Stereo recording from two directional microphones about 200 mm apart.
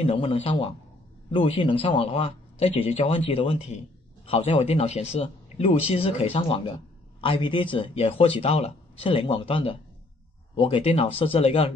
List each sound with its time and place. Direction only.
0.0 s speech: 30° left (ahead or behind)